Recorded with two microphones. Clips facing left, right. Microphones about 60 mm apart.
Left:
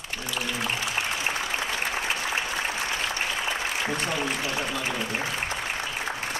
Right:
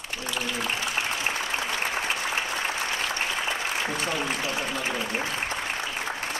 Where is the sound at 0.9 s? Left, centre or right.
Right.